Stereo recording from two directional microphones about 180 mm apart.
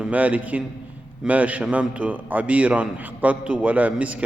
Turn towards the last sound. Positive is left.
turn(degrees=-10)  # may be behind; listen again after turning